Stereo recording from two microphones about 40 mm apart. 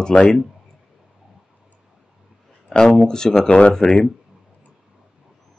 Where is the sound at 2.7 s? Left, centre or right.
Centre.